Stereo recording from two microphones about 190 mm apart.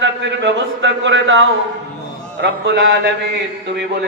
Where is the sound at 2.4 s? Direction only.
65° right (ahead or behind).